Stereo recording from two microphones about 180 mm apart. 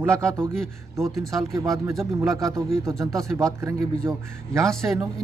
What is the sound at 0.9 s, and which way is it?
Speech, 15° right (ahead or behind).